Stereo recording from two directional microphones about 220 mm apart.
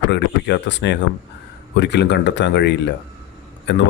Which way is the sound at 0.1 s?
50° left (ahead or behind).